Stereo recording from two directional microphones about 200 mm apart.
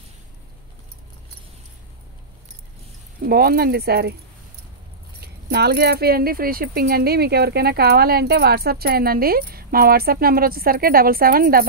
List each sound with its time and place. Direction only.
3.2 s speech: 50° right (ahead or behind)
5.5 s speech: 55° right (ahead or behind)